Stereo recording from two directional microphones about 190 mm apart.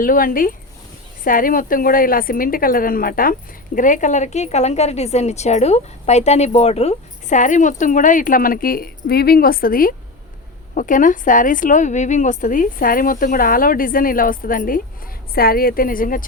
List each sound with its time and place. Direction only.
0.0 s a woman's voice: 45° left (ahead or behind)